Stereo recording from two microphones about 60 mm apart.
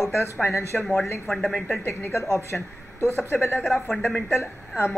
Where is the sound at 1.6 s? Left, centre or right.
Left.